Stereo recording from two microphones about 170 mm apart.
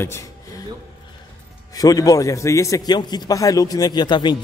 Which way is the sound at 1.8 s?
20° left (ahead or behind).